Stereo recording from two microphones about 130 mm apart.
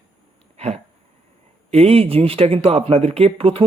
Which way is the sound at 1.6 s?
50° right (ahead or behind).